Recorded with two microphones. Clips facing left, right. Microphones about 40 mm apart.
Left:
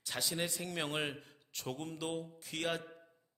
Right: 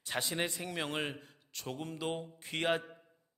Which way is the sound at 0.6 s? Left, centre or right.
Centre.